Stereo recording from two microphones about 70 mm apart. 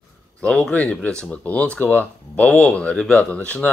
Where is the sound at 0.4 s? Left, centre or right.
Centre.